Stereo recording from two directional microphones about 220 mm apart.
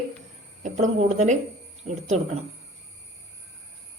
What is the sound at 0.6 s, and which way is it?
A woman's voice, 30° right (ahead or behind).